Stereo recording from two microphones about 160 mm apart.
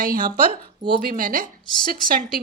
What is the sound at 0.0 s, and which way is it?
Speech, 60° right (ahead or behind).